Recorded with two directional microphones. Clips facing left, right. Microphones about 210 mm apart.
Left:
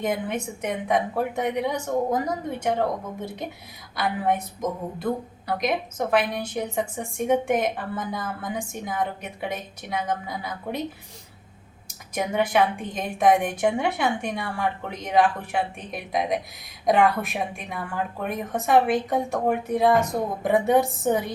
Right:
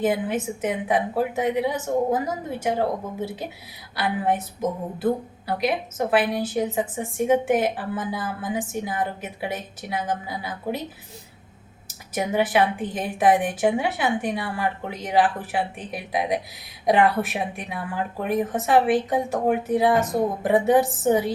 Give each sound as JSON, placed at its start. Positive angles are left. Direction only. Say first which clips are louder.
{"t": 0.0, "sound": "a woman's voice", "louder": "right 3 dB", "side_deg": -5}
{"t": 12.1, "sound": "a woman's voice", "louder": "right 1 dB", "side_deg": -5}